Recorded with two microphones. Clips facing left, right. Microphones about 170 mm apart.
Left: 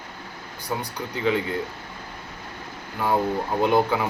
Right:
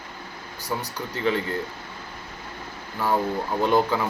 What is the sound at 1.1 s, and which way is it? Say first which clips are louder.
Speech: left 1 dB; 15° left (ahead or behind).